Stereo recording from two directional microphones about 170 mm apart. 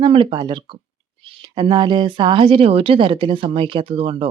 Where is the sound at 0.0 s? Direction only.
30° right (ahead or behind).